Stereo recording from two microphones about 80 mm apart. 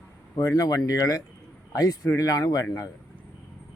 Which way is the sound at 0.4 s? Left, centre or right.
Left.